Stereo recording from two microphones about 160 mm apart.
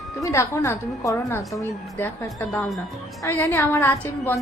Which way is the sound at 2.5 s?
5° left (ahead or behind).